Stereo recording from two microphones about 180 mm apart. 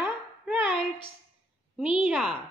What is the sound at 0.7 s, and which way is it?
Speech, 25° left (ahead or behind).